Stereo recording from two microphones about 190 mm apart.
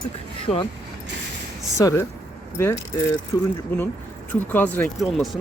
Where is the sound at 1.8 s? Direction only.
15° left (ahead or behind).